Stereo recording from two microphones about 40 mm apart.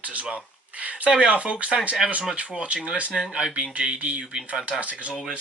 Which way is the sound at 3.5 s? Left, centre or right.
Right.